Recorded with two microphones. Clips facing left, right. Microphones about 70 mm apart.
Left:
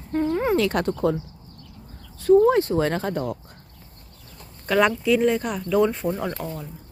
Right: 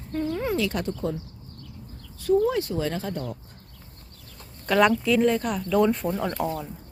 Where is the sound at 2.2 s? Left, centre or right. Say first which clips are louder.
Left 6 dB; left.